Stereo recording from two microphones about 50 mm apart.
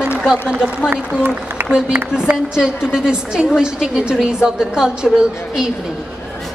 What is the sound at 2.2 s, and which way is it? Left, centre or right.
A man's voice, centre.